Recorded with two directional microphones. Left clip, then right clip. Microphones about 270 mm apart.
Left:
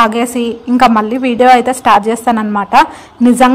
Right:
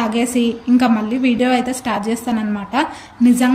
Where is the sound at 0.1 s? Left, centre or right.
Centre.